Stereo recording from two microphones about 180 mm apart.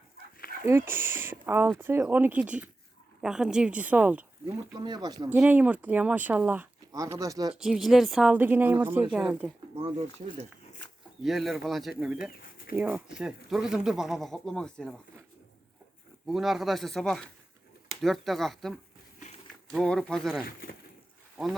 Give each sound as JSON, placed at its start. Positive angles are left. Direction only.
{"t": 0.6, "sound": "speech", "side_deg": -15}
{"t": 4.7, "sound": "speech", "side_deg": -25}
{"t": 5.3, "sound": "speech", "side_deg": -10}
{"t": 7.5, "sound": "speech", "side_deg": -5}
{"t": 9.7, "sound": "speech", "side_deg": -35}
{"t": 11.2, "sound": "speech", "side_deg": 0}
{"t": 16.2, "sound": "speech", "side_deg": 0}